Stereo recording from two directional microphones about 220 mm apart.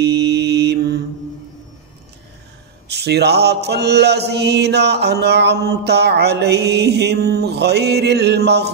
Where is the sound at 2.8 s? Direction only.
50° right (ahead or behind).